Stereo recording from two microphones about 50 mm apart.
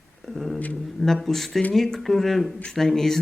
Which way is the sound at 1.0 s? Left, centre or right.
Centre.